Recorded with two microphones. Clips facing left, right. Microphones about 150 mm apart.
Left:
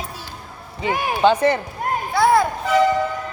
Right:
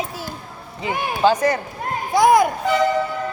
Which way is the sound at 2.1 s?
15° right (ahead or behind).